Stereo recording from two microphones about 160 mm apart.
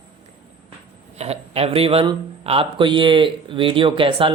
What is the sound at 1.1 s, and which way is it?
A man's voice, 40° right (ahead or behind).